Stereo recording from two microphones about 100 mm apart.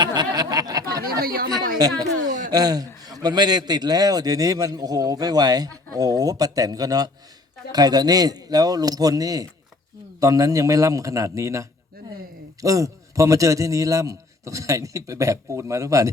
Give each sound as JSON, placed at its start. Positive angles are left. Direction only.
{"t": 0.0, "sound": "a woman's voice", "side_deg": -45}